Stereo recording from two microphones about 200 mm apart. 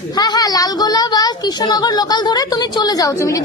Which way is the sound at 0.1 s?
20° left (ahead or behind).